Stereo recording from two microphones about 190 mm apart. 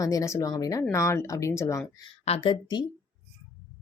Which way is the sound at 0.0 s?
15° left (ahead or behind).